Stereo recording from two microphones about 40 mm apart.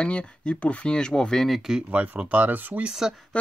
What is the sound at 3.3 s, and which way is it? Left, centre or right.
Speech, left.